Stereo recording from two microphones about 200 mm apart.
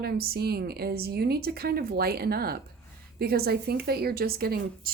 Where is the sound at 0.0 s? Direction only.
50° right (ahead or behind).